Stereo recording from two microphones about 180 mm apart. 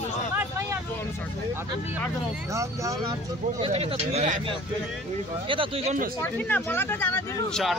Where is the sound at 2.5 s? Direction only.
15° right (ahead or behind).